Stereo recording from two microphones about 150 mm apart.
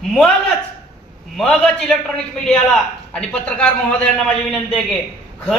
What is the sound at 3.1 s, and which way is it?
A man's voice, 5° left (ahead or behind).